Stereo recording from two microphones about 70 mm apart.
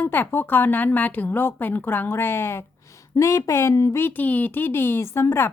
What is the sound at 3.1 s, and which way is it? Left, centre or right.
Speech, left.